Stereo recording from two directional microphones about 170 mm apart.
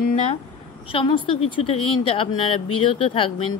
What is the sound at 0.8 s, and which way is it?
Speech, 30° left (ahead or behind).